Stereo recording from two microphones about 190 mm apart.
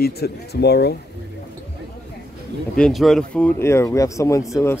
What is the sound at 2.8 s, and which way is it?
Speech, centre (ahead or behind).